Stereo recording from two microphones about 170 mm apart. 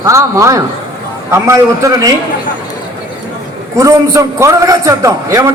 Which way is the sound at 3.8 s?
20° right (ahead or behind).